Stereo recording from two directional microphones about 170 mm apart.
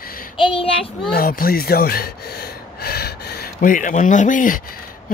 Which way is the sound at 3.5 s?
50° left (ahead or behind).